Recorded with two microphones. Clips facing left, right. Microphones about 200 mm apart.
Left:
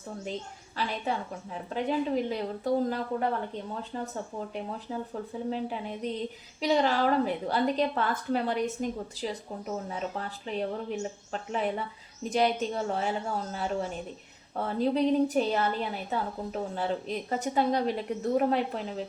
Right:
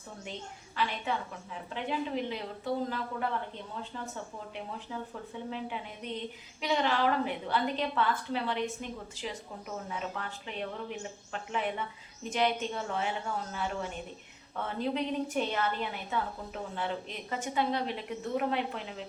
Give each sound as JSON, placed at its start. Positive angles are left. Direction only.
{"t": 0.8, "sound": "a woman's voice", "side_deg": 35}